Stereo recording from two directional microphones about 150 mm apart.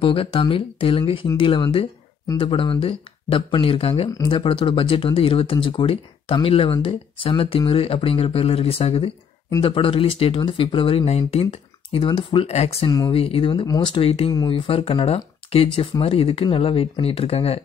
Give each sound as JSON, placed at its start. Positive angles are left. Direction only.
{"t": 0.0, "sound": "speech", "side_deg": 40}